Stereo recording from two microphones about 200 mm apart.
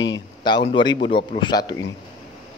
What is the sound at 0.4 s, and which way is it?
A man's voice, 20° left (ahead or behind).